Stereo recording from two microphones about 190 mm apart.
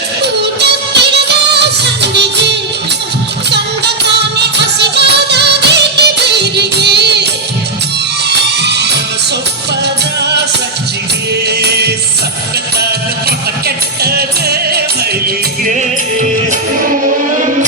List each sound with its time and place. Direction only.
0.2 s music: 60° right (ahead or behind)
3.5 s music: 60° right (ahead or behind)
8.3 s music: 65° right (ahead or behind)
11.4 s music: 60° right (ahead or behind)
13.7 s music: 55° right (ahead or behind)